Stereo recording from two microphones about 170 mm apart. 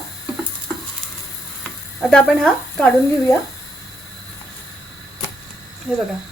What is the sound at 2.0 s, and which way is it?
Speech, 5° left (ahead or behind).